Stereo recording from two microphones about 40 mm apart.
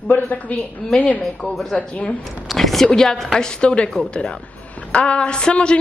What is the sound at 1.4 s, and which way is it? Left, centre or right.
Speech, centre.